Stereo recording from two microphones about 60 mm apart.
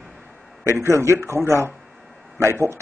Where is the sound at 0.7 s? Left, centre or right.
Right.